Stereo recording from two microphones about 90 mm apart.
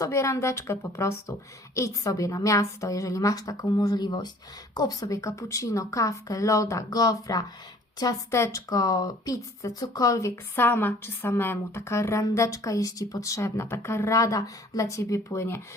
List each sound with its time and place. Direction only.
0.0 s speech: 35° left (ahead or behind)
8.5 s speech: 40° left (ahead or behind)